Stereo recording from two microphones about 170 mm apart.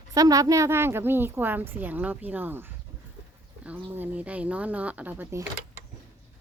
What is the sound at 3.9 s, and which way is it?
Speech, 10° right (ahead or behind).